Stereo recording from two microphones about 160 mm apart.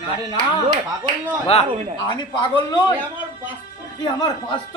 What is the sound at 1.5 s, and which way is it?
Speech, 40° left (ahead or behind).